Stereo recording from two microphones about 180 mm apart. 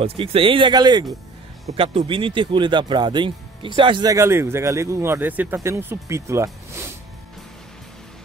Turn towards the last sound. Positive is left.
turn(degrees=-15)  # may be behind; listen again after turning